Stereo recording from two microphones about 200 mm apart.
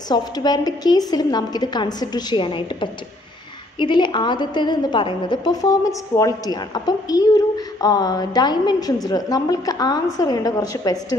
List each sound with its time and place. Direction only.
0.1 s a woman's voice: 20° left (ahead or behind)